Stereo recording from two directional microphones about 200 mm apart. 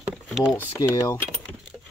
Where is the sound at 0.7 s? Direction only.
15° left (ahead or behind).